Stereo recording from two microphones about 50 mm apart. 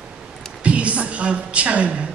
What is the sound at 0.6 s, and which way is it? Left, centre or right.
A woman's voice, right.